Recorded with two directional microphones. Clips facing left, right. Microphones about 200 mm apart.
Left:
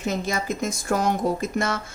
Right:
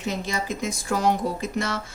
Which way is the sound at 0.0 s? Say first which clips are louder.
Left 2 dB; 45° left (ahead or behind).